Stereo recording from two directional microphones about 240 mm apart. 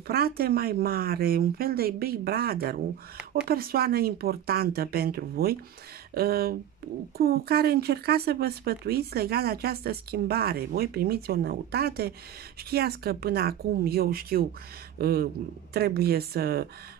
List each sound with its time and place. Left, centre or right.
0.0 s speech: right